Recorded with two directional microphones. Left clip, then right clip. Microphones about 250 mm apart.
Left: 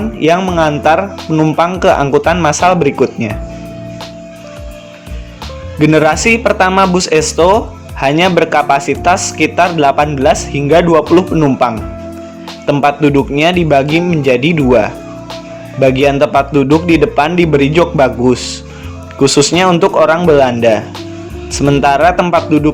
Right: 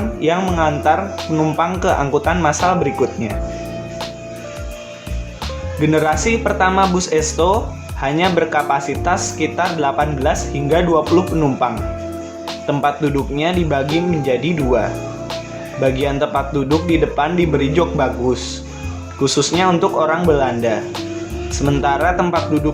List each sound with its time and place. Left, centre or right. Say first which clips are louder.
0.2 s speech: left 6 dB; left
5.8 s speech: left 7 dB; left
13.8 s speech: left 5 dB; centre
14.3 s speech: left 9 dB; left
16.6 s speech: left 6 dB; centre
16.9 s speech: left 6 dB; left